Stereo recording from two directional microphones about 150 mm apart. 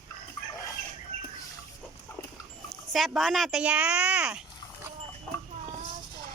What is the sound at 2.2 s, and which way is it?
Dog, 20° left (ahead or behind).